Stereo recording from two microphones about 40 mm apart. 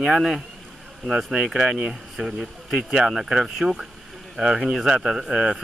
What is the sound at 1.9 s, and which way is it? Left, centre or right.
Speech, centre.